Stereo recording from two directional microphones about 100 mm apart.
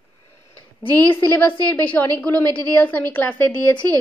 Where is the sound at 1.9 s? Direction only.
15° left (ahead or behind).